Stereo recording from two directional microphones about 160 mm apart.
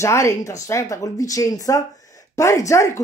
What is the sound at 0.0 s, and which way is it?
Speech, 20° left (ahead or behind).